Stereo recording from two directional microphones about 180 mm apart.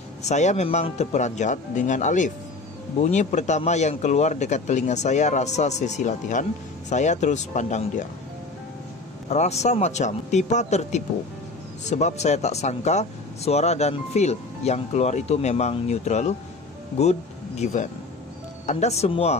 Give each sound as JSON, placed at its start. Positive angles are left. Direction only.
{"t": 0.2, "sound": "speech", "side_deg": 40}
{"t": 9.3, "sound": "speech", "side_deg": 40}